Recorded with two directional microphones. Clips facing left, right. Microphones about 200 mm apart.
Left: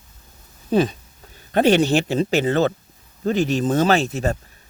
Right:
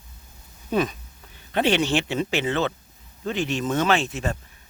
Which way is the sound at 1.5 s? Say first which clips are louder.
Left 5 dB; 40° left (ahead or behind).